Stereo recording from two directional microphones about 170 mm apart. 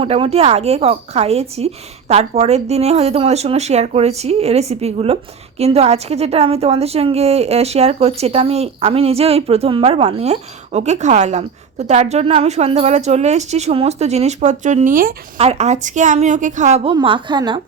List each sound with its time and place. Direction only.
0.0 s a woman's voice: 35° right (ahead or behind); by 15.1 s 50° right (ahead or behind)
15.4 s a woman's voice: 40° right (ahead or behind)
16.9 s a woman's voice: 30° right (ahead or behind)